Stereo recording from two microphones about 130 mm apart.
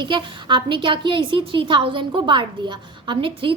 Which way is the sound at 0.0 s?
40° right (ahead or behind).